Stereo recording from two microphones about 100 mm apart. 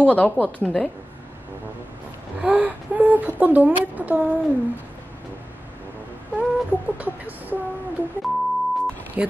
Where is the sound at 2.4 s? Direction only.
15° right (ahead or behind).